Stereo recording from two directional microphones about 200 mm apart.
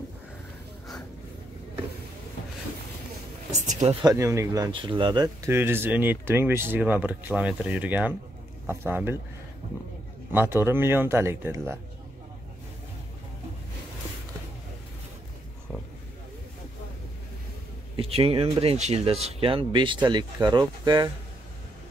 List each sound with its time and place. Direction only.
3.5 s speech: 35° right (ahead or behind)
4.0 s speech: 15° right (ahead or behind)
10.3 s speech: 10° right (ahead or behind)
17.9 s speech: 30° right (ahead or behind)